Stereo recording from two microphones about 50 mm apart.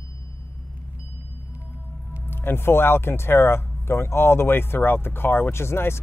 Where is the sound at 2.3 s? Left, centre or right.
Left.